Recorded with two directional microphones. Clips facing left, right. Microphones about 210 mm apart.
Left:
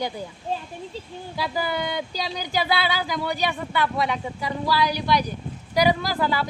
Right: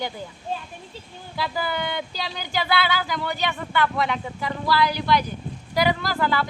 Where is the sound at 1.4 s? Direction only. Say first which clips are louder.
Left 1 dB; 15° left (ahead or behind).